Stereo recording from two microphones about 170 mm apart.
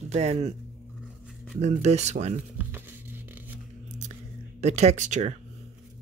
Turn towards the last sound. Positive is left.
turn(degrees=-45)  # may be behind; listen again after turning